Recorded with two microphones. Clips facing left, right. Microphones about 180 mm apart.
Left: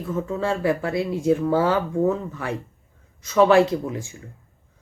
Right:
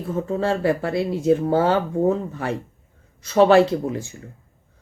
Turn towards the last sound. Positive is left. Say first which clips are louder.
# right 2 dB
turn(degrees=-35)  # may be behind; listen again after turning